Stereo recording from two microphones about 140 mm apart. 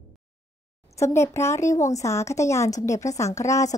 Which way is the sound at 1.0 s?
20° left (ahead or behind).